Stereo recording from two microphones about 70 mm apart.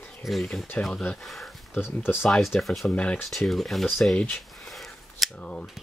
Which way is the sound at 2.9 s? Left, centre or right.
Centre.